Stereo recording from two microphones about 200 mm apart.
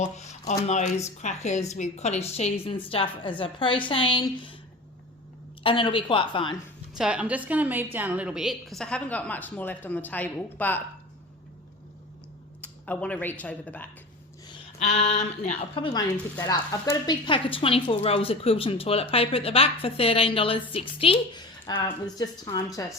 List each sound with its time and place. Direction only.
0.0 s a woman's voice: 35° left (ahead or behind)
5.6 s a woman's voice: 25° left (ahead or behind)
6.9 s a woman's voice: 5° right (ahead or behind)
12.6 s speech: 5° left (ahead or behind)
14.8 s a woman's voice: 35° left (ahead or behind); by 22.9 s 20° left (ahead or behind)